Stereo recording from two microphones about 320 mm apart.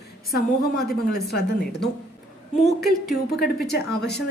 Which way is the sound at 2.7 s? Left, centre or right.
Centre.